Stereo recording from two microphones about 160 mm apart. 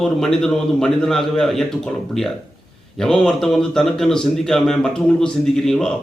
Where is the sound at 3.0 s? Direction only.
5° left (ahead or behind).